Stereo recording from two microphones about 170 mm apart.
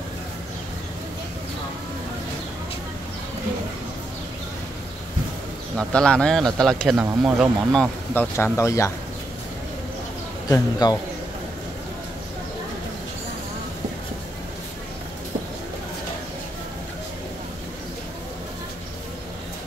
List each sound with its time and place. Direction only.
5.8 s speech: 5° left (ahead or behind)
8.1 s speech: 10° left (ahead or behind)
10.5 s a man's voice: 25° left (ahead or behind)